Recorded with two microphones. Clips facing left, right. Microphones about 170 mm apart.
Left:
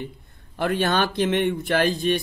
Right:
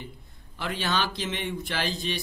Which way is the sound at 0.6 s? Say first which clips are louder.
Left 7 dB; 55° left (ahead or behind).